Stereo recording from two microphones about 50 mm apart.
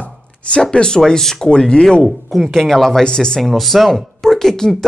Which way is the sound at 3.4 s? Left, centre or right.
Centre.